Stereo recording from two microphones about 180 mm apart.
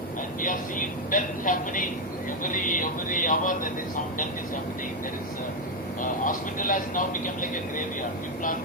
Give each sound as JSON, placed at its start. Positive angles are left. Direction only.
{"t": 0.4, "sound": "speech", "side_deg": 50}
{"t": 6.0, "sound": "speech", "side_deg": 45}